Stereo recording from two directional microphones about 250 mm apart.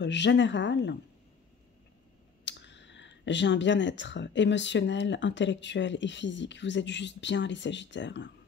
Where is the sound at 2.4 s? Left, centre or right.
Left.